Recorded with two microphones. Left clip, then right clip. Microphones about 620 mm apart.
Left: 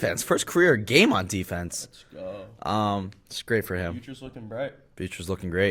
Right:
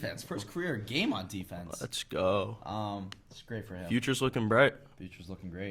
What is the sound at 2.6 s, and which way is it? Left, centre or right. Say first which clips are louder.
Speech: left 11 dB; left.